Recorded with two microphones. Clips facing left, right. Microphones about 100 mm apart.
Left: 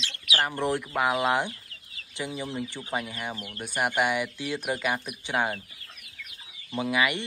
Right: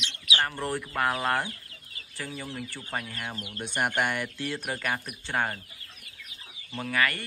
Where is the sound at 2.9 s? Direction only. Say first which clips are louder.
Left 3 dB; 10° left (ahead or behind).